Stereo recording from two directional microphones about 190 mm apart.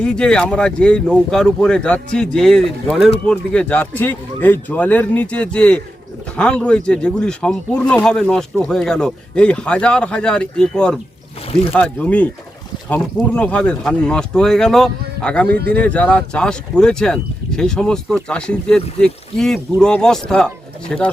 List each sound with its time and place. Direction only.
0.0 s speech: 5° left (ahead or behind)
15.4 s speech: 60° right (ahead or behind)
15.7 s speech: 5° left (ahead or behind)